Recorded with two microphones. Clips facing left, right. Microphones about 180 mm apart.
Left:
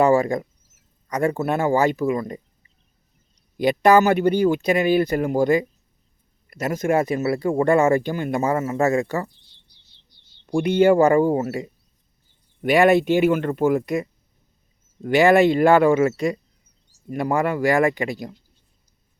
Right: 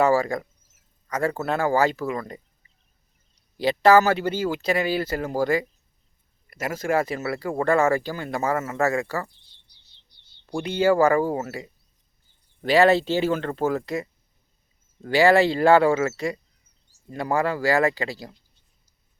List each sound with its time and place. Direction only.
0.0 s speech: 20° left (ahead or behind)
3.6 s speech: 15° left (ahead or behind)
10.5 s speech: 15° left (ahead or behind)
12.7 s speech: 15° left (ahead or behind)